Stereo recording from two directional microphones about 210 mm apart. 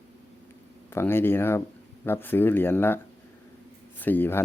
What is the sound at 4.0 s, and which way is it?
Speech, 10° left (ahead or behind).